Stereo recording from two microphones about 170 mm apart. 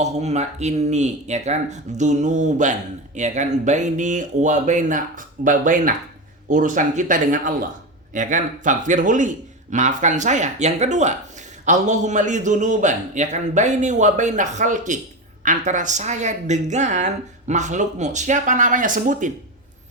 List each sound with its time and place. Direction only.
0.0 s speech: 40° right (ahead or behind)